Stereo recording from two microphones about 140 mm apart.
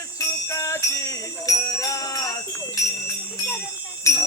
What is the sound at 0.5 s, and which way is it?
Jingle bell, 25° left (ahead or behind).